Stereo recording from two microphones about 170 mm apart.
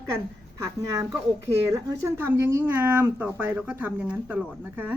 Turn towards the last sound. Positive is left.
turn(degrees=-10)  # may be behind; listen again after turning